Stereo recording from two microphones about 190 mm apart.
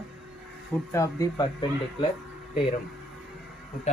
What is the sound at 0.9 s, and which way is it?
Speech, 15° left (ahead or behind).